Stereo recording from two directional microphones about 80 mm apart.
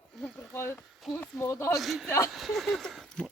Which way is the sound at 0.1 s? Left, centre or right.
Centre.